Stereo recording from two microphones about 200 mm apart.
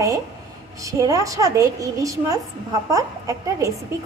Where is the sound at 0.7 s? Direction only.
15° right (ahead or behind).